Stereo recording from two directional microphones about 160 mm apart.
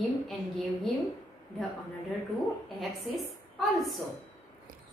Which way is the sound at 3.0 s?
Centre (ahead or behind).